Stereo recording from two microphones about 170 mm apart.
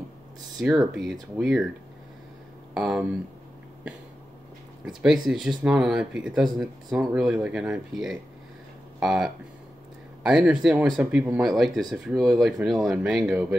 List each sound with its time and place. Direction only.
0.6 s speech: centre (ahead or behind)
2.7 s speech: 5° right (ahead or behind)
4.8 s speech: 5° right (ahead or behind)